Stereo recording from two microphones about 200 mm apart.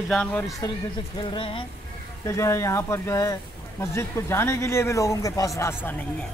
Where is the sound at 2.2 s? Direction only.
15° left (ahead or behind).